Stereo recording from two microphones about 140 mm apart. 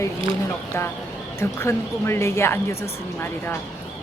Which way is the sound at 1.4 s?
20° left (ahead or behind).